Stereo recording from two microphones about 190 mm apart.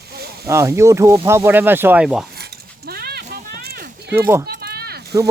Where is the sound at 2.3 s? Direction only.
55° right (ahead or behind).